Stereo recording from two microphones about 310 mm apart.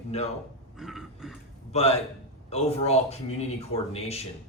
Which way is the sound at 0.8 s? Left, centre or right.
Centre.